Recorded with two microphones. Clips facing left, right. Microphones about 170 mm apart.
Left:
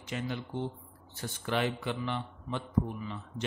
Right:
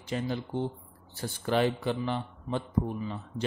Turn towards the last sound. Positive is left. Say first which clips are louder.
# right 4 dB
turn(degrees=-35)  # may be behind; listen again after turning